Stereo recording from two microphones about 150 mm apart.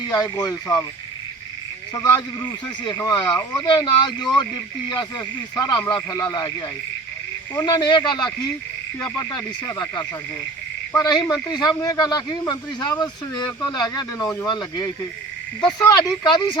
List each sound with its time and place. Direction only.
0.1 s speech: 25° left (ahead or behind)
2.8 s speech: 30° left (ahead or behind)